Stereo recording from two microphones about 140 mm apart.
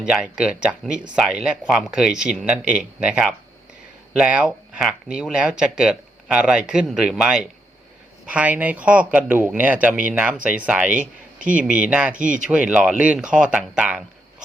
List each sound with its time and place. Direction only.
0.0 s speech: 5° right (ahead or behind)